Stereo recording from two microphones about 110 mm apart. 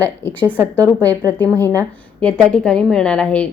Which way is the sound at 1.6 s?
20° left (ahead or behind).